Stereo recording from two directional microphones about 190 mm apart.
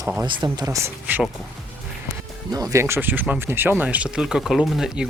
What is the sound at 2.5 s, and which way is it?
Speech, 15° right (ahead or behind).